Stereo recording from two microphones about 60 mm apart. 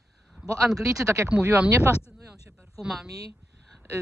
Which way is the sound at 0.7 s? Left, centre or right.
Right.